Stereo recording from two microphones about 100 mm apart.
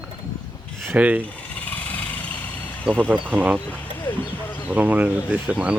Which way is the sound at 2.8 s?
10° right (ahead or behind).